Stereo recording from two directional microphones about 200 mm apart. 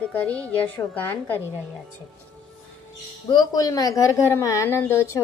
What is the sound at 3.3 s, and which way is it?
A woman's voice, 20° left (ahead or behind).